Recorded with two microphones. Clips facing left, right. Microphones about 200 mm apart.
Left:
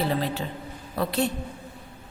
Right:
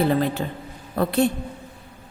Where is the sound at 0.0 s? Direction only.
50° right (ahead or behind).